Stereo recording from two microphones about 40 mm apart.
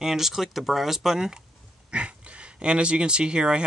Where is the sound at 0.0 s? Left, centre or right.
Centre.